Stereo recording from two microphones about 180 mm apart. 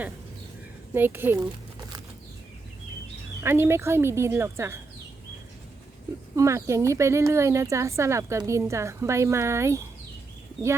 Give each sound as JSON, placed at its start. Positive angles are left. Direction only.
{"t": 0.9, "sound": "a woman's voice", "side_deg": -10}
{"t": 3.4, "sound": "a woman's voice", "side_deg": -15}
{"t": 6.3, "sound": "a woman's voice", "side_deg": -15}